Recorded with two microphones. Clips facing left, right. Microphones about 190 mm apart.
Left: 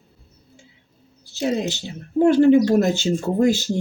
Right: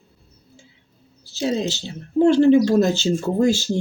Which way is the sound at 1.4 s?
15° left (ahead or behind).